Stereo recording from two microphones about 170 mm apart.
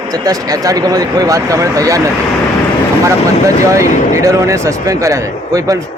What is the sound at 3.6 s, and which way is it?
A man's voice, 20° right (ahead or behind).